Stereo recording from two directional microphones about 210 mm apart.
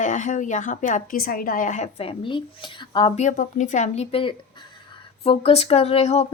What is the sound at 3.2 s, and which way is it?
A woman's voice, 35° left (ahead or behind).